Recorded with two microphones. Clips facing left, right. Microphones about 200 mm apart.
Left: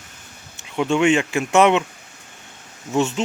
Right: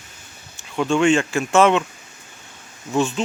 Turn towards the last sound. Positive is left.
turn(degrees=25)  # may be behind; listen again after turning